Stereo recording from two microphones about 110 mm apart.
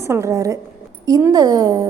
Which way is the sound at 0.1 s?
25° right (ahead or behind).